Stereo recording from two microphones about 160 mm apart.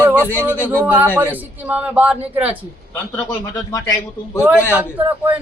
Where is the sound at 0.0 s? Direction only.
10° right (ahead or behind).